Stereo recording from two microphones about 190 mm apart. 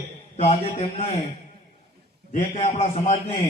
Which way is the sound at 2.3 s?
35° left (ahead or behind).